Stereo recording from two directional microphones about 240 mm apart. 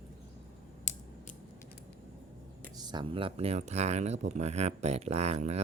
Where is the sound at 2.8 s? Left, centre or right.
Centre.